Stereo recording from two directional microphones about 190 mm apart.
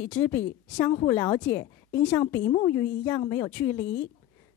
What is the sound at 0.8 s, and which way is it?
A woman's voice, 20° left (ahead or behind).